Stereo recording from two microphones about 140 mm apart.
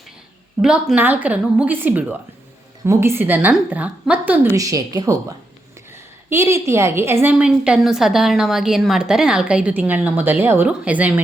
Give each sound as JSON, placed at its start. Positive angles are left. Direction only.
{"t": 0.6, "sound": "a woman's voice", "side_deg": -5}
{"t": 4.5, "sound": "a woman's voice", "side_deg": -25}
{"t": 6.3, "sound": "a woman's voice", "side_deg": -20}
{"t": 7.3, "sound": "a woman's voice", "side_deg": -5}